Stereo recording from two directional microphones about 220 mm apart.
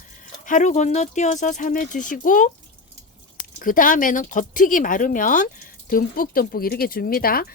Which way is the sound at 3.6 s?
40° left (ahead or behind).